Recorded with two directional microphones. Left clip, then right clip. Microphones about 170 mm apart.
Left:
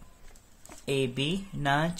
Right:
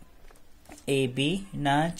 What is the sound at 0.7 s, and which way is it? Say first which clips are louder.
Speech: right 2 dB; 10° right (ahead or behind).